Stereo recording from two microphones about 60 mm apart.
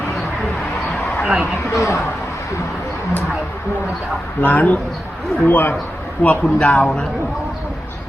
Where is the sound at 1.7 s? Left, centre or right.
Left.